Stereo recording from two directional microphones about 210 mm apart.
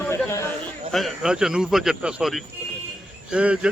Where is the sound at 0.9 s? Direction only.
Centre (ahead or behind).